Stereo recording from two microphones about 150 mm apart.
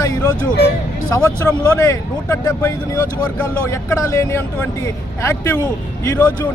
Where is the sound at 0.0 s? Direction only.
20° left (ahead or behind).